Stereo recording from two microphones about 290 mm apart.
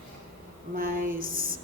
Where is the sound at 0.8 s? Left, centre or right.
Right.